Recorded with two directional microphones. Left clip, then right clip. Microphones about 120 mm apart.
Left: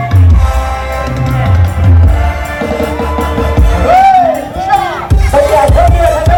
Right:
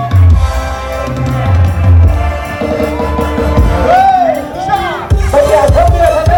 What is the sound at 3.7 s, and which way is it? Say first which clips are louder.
Music: left 1 dB; 25° left (ahead or behind).